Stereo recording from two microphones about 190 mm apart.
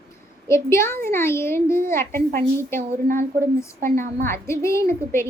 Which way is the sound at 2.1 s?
45° right (ahead or behind).